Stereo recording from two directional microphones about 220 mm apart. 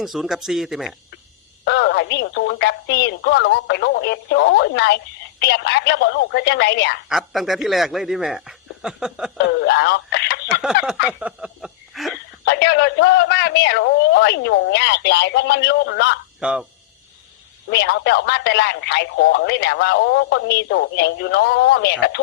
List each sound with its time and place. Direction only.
0.0 s speech: centre (ahead or behind)
1.6 s speech: 50° left (ahead or behind)
7.1 s speech: centre (ahead or behind)
9.5 s speech: 50° left (ahead or behind)
10.4 s snicker: 5° right (ahead or behind)
11.0 s a sound: 5° right (ahead or behind)
12.5 s speech: 50° left (ahead or behind)
16.4 s speech: 5° right (ahead or behind)
17.7 s speech: 50° left (ahead or behind)